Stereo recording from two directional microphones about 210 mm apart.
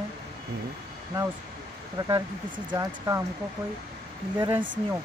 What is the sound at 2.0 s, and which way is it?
Speech, 20° right (ahead or behind).